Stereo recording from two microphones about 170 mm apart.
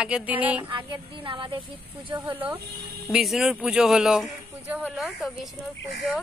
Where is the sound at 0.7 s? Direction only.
30° right (ahead or behind).